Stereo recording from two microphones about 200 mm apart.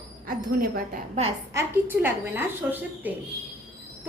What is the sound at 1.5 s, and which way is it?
A woman's voice, 10° right (ahead or behind).